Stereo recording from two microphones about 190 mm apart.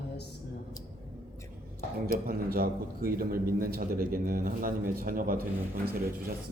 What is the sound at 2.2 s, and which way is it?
A man's voice, 50° right (ahead or behind).